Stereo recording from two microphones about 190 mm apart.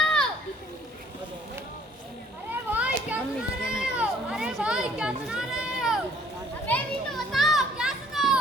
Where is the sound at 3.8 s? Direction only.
5° right (ahead or behind).